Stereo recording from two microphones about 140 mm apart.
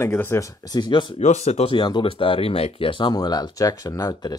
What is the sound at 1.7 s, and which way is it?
Speech, 35° left (ahead or behind).